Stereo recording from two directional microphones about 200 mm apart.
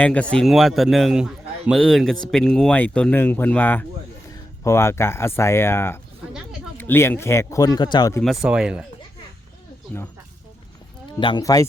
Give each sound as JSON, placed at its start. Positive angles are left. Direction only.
{"t": 0.0, "sound": "a man's voice", "side_deg": 5}
{"t": 8.2, "sound": "a man's voice", "side_deg": 0}
{"t": 11.2, "sound": "speech", "side_deg": 20}